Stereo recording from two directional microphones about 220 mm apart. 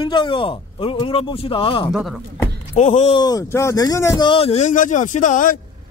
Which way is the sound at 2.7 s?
30° left (ahead or behind).